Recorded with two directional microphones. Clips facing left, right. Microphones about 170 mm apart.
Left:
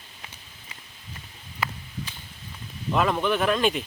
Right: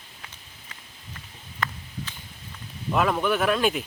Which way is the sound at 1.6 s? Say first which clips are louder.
Even; 5° left (ahead or behind).